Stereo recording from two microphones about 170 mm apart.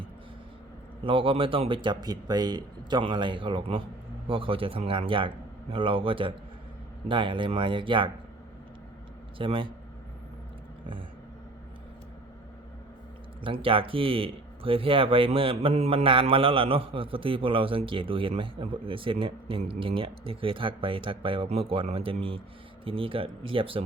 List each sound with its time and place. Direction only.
1.0 s speech: 30° right (ahead or behind)
9.4 s speech: 30° right (ahead or behind)
13.4 s speech: 30° right (ahead or behind)